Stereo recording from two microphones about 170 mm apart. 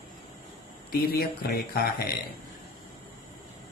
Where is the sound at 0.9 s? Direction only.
70° left (ahead or behind).